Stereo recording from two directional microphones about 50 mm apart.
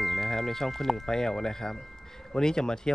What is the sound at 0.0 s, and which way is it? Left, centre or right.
Speech, centre.